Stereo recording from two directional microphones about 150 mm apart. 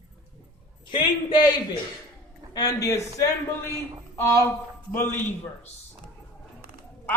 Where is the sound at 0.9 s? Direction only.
30° left (ahead or behind).